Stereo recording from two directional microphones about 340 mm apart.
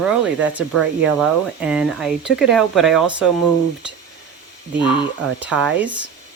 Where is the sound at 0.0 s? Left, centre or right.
Centre.